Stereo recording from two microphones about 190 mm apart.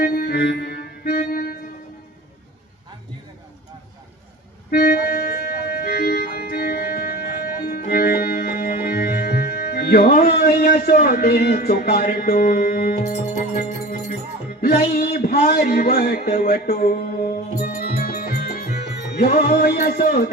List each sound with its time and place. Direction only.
0.0 s music: 50° left (ahead or behind)
4.7 s music: 55° left (ahead or behind)
13.6 s speech: 40° left (ahead or behind)
14.6 s speech: 55° left (ahead or behind)
17.6 s music: 50° left (ahead or behind)